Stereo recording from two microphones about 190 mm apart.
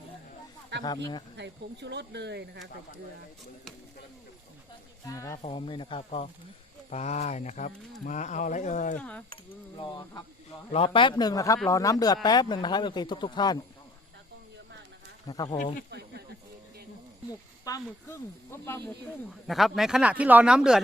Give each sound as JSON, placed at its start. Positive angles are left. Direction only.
{"t": 0.7, "sound": "a sound", "side_deg": -65}
{"t": 1.4, "sound": "speech", "side_deg": -65}
{"t": 5.0, "sound": "speech", "side_deg": 15}
{"t": 5.4, "sound": "speech", "side_deg": 30}
{"t": 9.0, "sound": "speech", "side_deg": 5}
{"t": 9.3, "sound": "speech", "side_deg": 25}
{"t": 15.3, "sound": "speech", "side_deg": 20}
{"t": 15.9, "sound": "speech", "side_deg": -60}
{"t": 17.7, "sound": "speech", "side_deg": 15}
{"t": 19.5, "sound": "speech", "side_deg": 0}